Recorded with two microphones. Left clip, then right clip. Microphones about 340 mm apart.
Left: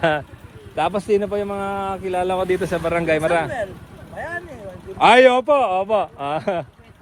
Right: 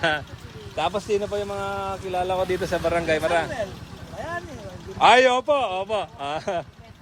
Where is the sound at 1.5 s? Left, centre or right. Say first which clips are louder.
Left 4 dB; left.